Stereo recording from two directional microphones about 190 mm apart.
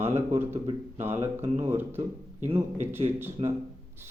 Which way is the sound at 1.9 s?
35° right (ahead or behind).